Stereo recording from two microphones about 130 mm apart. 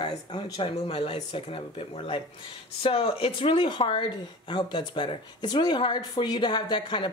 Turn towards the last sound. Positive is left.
turn(degrees=35)  # may be behind; listen again after turning